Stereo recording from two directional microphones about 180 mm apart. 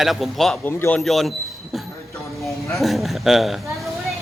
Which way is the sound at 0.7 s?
15° left (ahead or behind).